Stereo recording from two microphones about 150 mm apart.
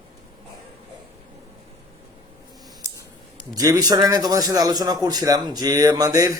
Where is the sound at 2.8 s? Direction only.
20° right (ahead or behind).